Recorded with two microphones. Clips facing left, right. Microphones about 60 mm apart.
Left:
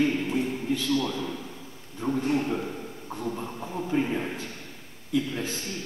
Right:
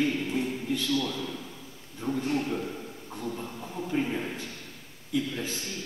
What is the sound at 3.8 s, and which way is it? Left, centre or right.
Speech, centre.